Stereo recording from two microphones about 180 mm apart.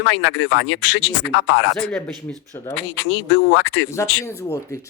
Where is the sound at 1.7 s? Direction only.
5° left (ahead or behind).